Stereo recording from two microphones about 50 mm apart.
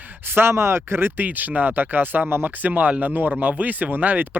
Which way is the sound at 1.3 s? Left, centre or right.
Right.